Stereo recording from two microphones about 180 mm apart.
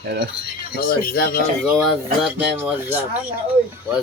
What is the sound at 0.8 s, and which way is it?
Speech, 55° left (ahead or behind).